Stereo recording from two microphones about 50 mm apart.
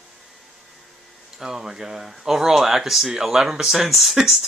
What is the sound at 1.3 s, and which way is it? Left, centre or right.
Speech, centre.